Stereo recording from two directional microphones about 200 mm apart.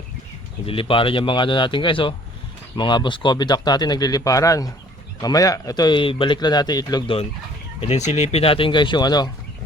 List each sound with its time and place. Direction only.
0.6 s a man's voice: 25° left (ahead or behind)
7.8 s a man's voice: 35° left (ahead or behind)